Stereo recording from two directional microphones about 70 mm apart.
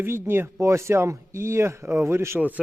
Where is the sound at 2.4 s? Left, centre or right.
Right.